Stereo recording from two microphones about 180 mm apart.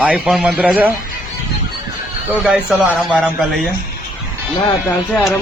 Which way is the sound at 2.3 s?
5° right (ahead or behind).